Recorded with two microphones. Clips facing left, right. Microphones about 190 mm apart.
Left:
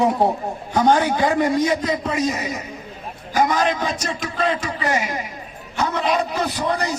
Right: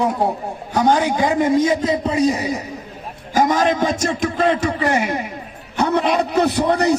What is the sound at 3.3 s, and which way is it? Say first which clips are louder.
A man's voice: right 3 dB; 45° right (ahead or behind).